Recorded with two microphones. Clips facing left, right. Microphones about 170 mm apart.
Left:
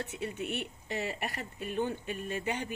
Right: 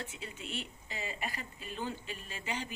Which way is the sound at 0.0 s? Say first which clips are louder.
Left 8 dB; 65° left (ahead or behind).